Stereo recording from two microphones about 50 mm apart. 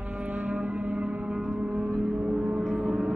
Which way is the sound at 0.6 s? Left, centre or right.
Right.